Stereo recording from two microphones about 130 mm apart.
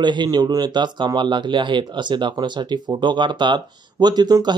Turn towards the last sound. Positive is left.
turn(degrees=-35)  # may be behind; listen again after turning